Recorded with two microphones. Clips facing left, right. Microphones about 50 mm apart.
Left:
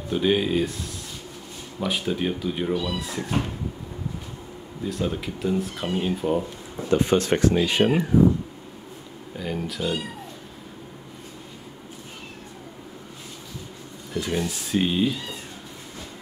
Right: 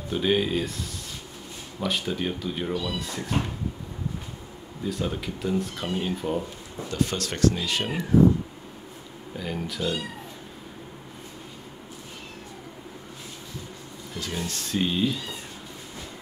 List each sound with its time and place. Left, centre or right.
0.1 s speech: centre
1.8 s speech: centre
4.8 s speech: centre
6.9 s speech: left
9.4 s speech: centre
14.1 s speech: centre